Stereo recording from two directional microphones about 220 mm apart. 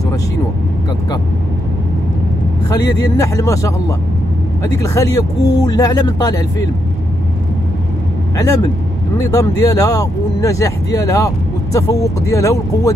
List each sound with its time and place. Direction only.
2.7 s speech: 15° left (ahead or behind)
4.8 s speech: 15° left (ahead or behind)
9.3 s speech: 15° left (ahead or behind)